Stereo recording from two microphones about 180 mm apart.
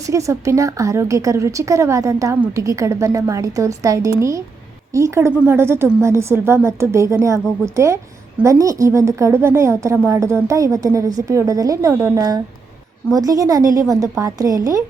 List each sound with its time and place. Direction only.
0.1 s a woman's voice: 15° right (ahead or behind)